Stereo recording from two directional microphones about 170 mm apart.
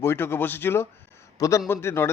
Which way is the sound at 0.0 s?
15° left (ahead or behind).